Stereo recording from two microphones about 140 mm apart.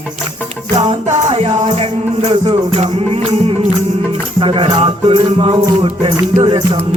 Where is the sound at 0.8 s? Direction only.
55° right (ahead or behind).